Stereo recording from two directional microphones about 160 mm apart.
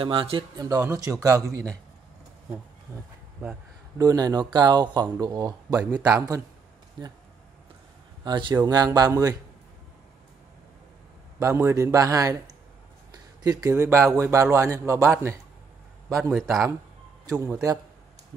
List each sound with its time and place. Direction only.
0.0 s speech: 35° right (ahead or behind)
0.7 s speech: 20° right (ahead or behind)
4.0 s speech: 25° right (ahead or behind)
7.0 s speech: 30° right (ahead or behind)
8.2 s speech: 30° right (ahead or behind)
11.3 s speech: 15° right (ahead or behind)
13.4 s speech: 20° right (ahead or behind)
16.2 s a man's voice: centre (ahead or behind)
17.3 s speech: 20° right (ahead or behind)